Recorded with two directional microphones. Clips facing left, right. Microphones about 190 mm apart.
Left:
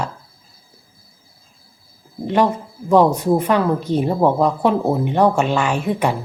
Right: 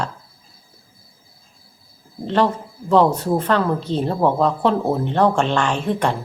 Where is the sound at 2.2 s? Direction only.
10° left (ahead or behind).